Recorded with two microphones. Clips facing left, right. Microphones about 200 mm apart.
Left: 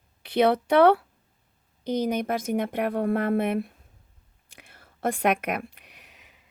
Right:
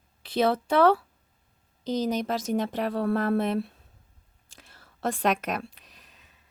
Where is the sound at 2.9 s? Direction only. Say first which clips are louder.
Even; 15° left (ahead or behind).